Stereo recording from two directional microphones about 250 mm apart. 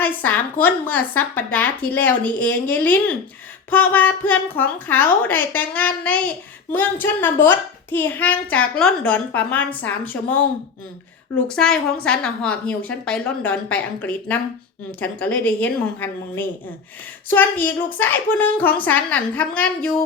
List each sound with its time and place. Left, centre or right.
0.0 s speech: centre
11.4 s a woman's voice: centre